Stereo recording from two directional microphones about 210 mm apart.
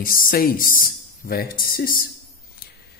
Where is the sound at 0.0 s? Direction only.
40° left (ahead or behind).